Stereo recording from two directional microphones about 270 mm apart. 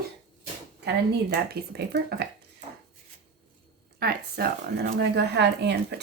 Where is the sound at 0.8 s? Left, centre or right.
Right.